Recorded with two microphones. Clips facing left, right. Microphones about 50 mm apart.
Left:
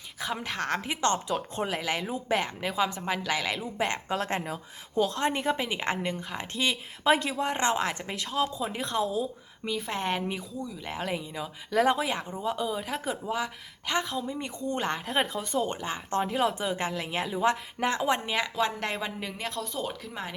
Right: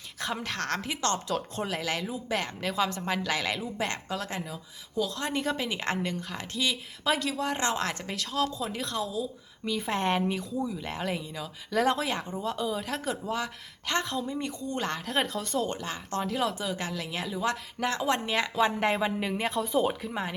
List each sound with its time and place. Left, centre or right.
0.2 s speech: centre
3.8 s speech: centre
4.1 s speech: left
5.2 s a woman's voice: centre
9.7 s speech: centre
14.6 s a woman's voice: left; by 20.0 s centre
20.0 s speech: centre